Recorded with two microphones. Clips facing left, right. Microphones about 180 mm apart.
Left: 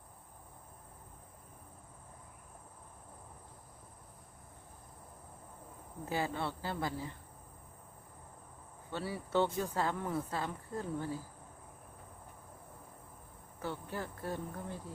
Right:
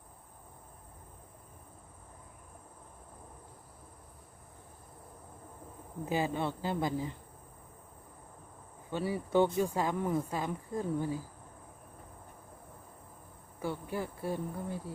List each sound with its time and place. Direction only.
6.1 s speech: 15° right (ahead or behind)
8.9 s speech: 15° right (ahead or behind)
13.6 s speech: 10° right (ahead or behind)